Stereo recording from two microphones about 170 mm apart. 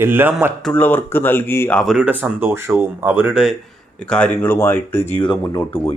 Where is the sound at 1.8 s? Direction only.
10° right (ahead or behind).